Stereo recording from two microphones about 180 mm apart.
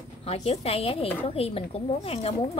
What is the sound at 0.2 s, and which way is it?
A woman's voice, 35° left (ahead or behind).